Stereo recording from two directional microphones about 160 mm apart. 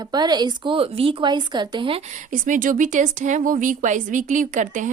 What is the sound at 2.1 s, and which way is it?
Speech, 55° right (ahead or behind).